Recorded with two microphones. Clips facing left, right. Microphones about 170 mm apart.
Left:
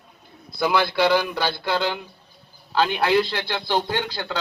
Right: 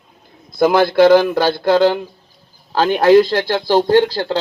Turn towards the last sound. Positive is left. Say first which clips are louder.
# right 13 dB
turn(degrees=-35)  # may be behind; listen again after turning